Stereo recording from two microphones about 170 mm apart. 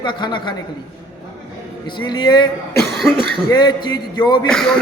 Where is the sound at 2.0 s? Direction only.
25° left (ahead or behind).